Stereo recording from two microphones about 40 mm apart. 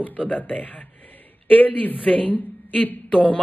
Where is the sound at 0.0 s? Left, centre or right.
Left.